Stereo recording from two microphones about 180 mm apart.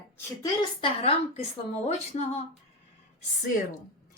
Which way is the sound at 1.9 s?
40° left (ahead or behind).